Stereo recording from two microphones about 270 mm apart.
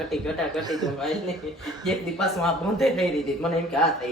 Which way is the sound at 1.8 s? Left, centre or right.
Centre.